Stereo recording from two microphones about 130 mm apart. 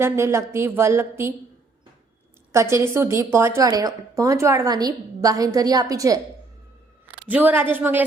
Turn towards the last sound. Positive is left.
turn(degrees=-15)  # may be behind; listen again after turning